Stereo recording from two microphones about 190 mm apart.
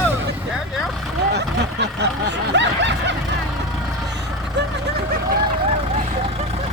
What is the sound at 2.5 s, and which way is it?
Snicker, 70° right (ahead or behind).